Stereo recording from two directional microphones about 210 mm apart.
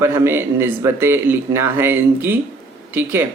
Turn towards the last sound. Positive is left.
turn(degrees=-10)  # may be behind; listen again after turning